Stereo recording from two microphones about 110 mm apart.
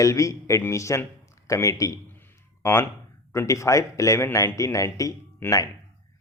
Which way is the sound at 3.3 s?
25° left (ahead or behind).